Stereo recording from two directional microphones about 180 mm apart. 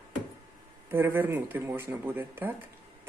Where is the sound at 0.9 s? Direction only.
10° right (ahead or behind).